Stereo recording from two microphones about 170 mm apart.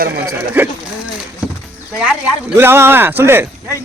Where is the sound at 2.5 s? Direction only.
15° right (ahead or behind).